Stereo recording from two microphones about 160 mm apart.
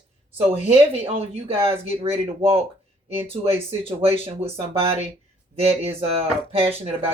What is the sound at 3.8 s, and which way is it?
Speech, 35° right (ahead or behind).